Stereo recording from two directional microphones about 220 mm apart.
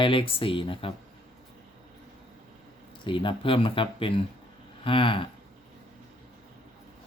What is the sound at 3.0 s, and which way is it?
Speech, 20° left (ahead or behind).